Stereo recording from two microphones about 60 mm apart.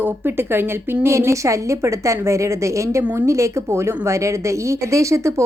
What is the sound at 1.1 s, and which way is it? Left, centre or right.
A woman's voice, right.